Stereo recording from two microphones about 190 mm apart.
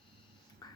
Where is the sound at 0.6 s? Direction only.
20° left (ahead or behind).